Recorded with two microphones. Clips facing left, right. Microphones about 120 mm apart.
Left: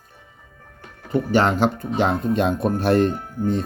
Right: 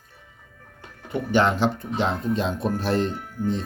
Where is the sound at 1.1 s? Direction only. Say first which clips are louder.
Left 2 dB; 40° left (ahead or behind).